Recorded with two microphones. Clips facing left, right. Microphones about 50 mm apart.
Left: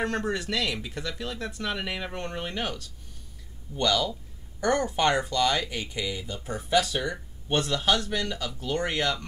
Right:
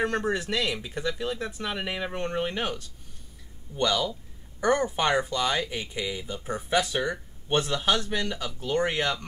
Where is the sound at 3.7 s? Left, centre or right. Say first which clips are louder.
Even; centre.